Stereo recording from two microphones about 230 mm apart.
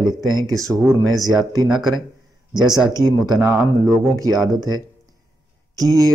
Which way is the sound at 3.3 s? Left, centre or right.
Centre.